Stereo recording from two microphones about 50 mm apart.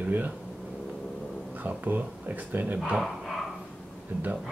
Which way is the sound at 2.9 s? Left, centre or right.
Centre.